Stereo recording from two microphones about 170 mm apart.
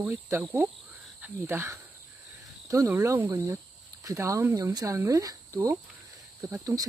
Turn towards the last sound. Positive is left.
turn(degrees=-20)  # may be behind; listen again after turning